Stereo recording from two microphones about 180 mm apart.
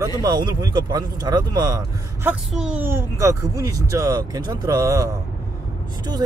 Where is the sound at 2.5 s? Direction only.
5° right (ahead or behind).